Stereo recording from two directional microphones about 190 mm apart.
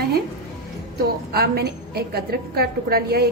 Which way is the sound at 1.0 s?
55° right (ahead or behind).